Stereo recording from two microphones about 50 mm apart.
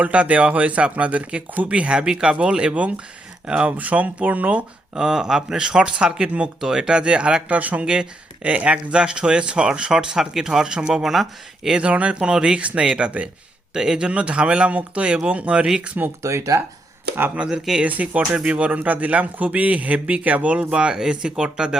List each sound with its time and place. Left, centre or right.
0.0 s speech: right
4.9 s speech: centre
11.7 s speech: right
16.2 s speech: right
17.3 s speech: centre
17.8 s speech: right